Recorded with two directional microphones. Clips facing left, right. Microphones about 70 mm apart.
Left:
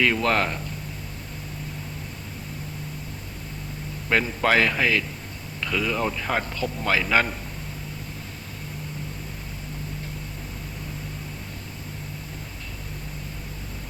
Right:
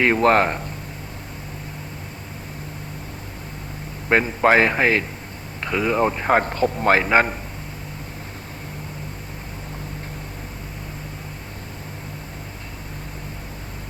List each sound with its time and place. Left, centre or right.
0.0 s a man's voice: right
4.1 s a man's voice: right